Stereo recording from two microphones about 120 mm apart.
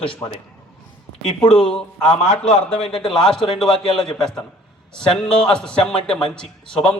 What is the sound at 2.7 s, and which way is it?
Speech, 50° left (ahead or behind).